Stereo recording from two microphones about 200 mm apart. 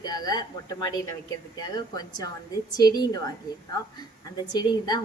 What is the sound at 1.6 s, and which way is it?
A woman's voice, 20° left (ahead or behind).